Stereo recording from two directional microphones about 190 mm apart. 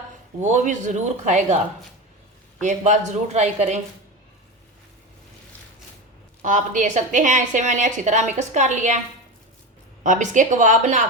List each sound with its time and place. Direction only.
0.3 s a woman's voice: 40° right (ahead or behind)
2.6 s a woman's voice: 40° right (ahead or behind)
6.4 s a woman's voice: 40° right (ahead or behind)
10.0 s a woman's voice: 40° right (ahead or behind)